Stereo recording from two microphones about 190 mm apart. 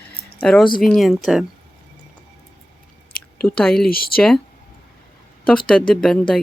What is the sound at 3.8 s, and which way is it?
Speech, 50° left (ahead or behind).